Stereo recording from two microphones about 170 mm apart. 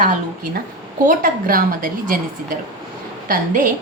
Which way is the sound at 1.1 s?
55° right (ahead or behind).